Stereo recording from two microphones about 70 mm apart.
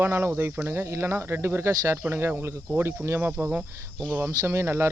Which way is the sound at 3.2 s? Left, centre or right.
Right.